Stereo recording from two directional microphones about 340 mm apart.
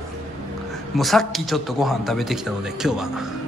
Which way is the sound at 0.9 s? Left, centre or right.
Centre.